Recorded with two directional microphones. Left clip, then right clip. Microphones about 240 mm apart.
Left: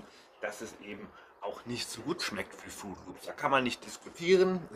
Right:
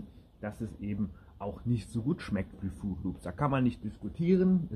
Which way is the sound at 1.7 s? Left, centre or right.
Centre.